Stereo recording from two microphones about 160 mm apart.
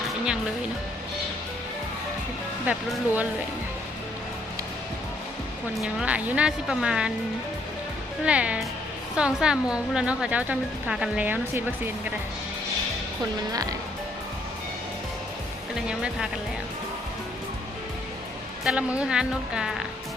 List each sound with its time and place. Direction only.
2.6 s speech: 10° right (ahead or behind)
5.8 s a woman's voice: 5° right (ahead or behind)
8.2 s a woman's voice: 10° right (ahead or behind)
13.5 s speech: 25° right (ahead or behind)
15.7 s a woman's voice: 5° right (ahead or behind)
18.6 s a woman's voice: 5° right (ahead or behind)